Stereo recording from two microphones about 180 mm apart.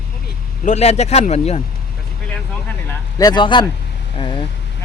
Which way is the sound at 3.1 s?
20° left (ahead or behind).